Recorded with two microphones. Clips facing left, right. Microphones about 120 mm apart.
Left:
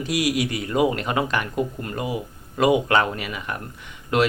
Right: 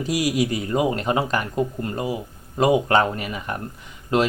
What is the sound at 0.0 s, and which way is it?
Speech, 40° right (ahead or behind).